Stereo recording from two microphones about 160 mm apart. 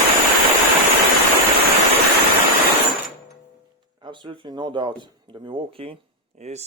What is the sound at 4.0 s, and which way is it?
Speech, 30° right (ahead or behind).